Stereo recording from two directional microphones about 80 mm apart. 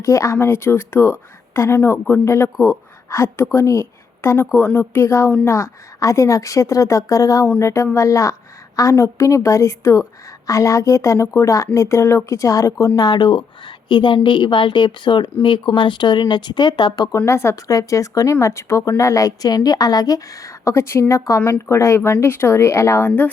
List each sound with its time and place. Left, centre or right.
0.0 s speech: left
2.2 s a woman's voice: left
13.0 s a woman's voice: left
17.2 s a woman's voice: left